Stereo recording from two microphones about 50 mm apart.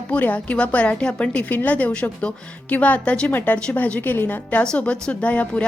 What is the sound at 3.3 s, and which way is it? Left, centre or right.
Speech, left.